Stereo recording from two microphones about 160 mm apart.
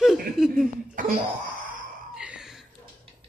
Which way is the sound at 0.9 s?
55° right (ahead or behind).